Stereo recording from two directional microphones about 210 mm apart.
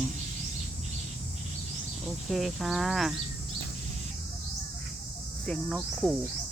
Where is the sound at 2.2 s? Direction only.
Centre (ahead or behind).